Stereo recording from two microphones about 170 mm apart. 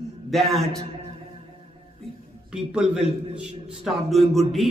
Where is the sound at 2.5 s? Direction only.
5° right (ahead or behind).